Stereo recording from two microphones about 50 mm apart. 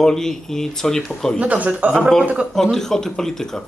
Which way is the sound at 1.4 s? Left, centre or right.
Right.